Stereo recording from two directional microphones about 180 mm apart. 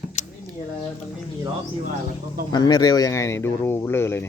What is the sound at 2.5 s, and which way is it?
Speech, 20° left (ahead or behind).